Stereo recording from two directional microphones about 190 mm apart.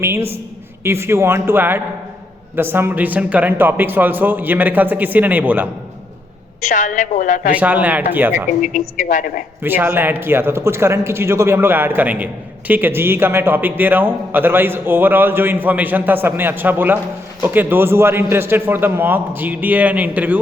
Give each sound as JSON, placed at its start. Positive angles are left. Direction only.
{"t": 0.0, "sound": "a man's voice", "side_deg": -15}
{"t": 6.7, "sound": "a woman's voice", "side_deg": 40}
{"t": 7.5, "sound": "a man's voice", "side_deg": -10}
{"t": 8.6, "sound": "a man's voice", "side_deg": 40}
{"t": 9.6, "sound": "a man's voice", "side_deg": -10}